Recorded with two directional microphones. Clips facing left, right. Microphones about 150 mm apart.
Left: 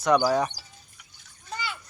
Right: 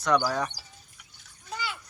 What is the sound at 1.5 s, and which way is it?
Splash, 5° right (ahead or behind).